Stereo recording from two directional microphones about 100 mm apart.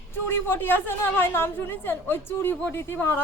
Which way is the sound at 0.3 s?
20° left (ahead or behind).